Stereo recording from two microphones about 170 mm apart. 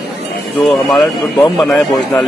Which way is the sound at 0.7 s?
Centre (ahead or behind).